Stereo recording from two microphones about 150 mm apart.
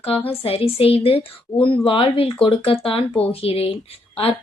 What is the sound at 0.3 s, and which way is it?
A woman's voice, 40° left (ahead or behind).